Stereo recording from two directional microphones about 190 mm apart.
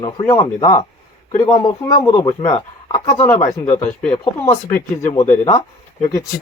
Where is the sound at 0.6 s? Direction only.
15° left (ahead or behind).